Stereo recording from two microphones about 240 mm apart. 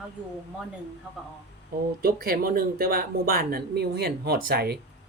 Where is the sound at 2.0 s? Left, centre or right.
Right.